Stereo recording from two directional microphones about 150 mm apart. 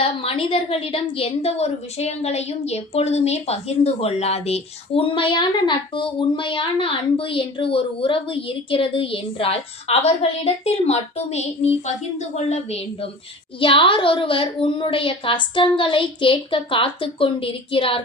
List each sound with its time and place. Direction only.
0.0 s a woman's voice: 40° left (ahead or behind)